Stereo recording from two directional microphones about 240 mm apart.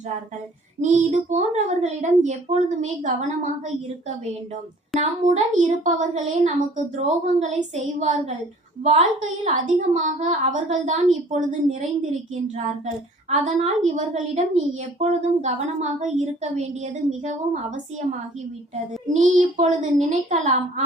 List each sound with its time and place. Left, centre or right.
0.8 s a woman's voice: right
4.9 s a woman's voice: right
19.0 s a woman's voice: right